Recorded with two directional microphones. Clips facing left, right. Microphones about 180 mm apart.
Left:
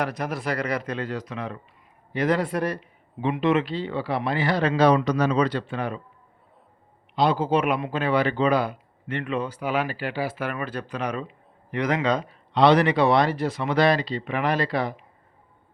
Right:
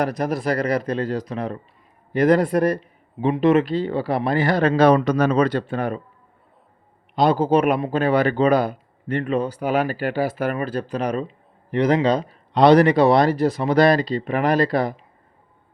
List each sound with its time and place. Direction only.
0.0 s a man's voice: 35° right (ahead or behind)
7.2 s speech: 45° right (ahead or behind)